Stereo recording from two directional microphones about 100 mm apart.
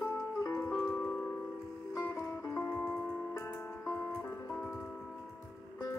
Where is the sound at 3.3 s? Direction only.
25° left (ahead or behind).